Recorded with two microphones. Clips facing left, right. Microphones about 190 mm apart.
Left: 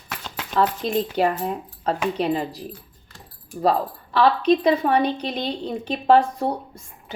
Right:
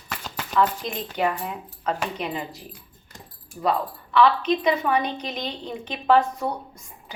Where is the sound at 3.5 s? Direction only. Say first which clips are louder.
Left 5 dB; 65° left (ahead or behind).